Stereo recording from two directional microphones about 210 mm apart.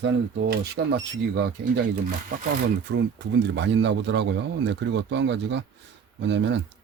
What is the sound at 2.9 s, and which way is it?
Speech, 55° right (ahead or behind).